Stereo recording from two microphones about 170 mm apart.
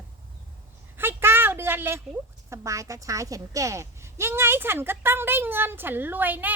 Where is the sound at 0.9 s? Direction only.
15° right (ahead or behind).